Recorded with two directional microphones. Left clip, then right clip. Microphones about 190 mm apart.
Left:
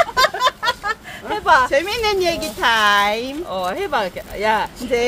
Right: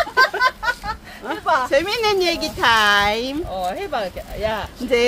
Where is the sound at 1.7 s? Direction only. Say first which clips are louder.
Even; 15° right (ahead or behind).